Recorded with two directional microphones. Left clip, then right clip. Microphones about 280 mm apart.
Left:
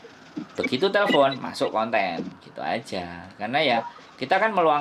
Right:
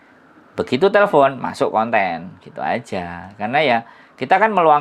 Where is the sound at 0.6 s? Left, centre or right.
Right.